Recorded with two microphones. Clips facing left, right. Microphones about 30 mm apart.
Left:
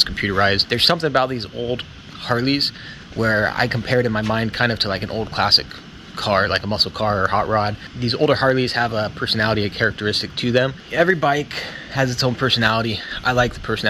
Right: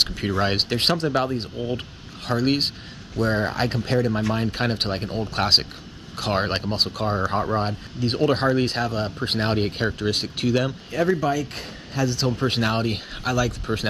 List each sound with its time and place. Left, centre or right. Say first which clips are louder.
0.0 s speech: left 5 dB; left
0.6 s speech: left 4 dB; left
1.1 s speech: left 4 dB; left
6.7 s speech: left 4 dB; left
9.5 s speech: left 4 dB; left
9.9 s speech: left 3 dB; left
12.6 s speech: left 5 dB; left